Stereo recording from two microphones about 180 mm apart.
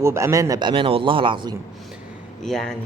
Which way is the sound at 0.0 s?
15° right (ahead or behind).